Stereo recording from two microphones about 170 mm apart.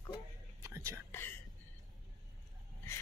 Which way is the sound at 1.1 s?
10° left (ahead or behind).